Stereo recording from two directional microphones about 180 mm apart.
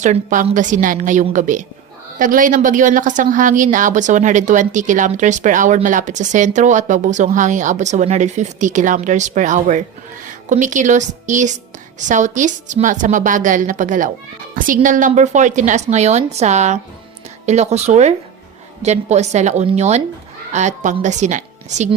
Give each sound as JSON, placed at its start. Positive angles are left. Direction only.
{"t": 0.0, "sound": "a woman's voice", "side_deg": -45}